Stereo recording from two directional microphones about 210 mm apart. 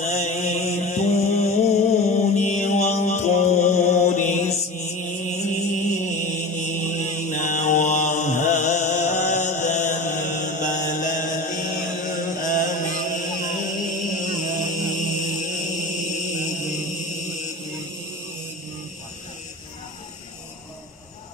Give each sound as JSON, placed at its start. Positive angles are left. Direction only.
{"t": 0.0, "sound": "mantra", "side_deg": 35}
{"t": 12.4, "sound": "chant", "side_deg": 40}
{"t": 16.3, "sound": "mantra", "side_deg": 35}